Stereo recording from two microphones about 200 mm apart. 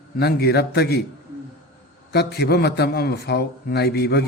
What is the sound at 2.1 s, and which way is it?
A man's voice, 55° left (ahead or behind).